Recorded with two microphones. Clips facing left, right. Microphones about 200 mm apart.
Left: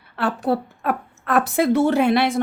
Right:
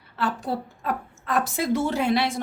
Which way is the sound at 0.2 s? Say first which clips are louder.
Left 6 dB; 65° left (ahead or behind).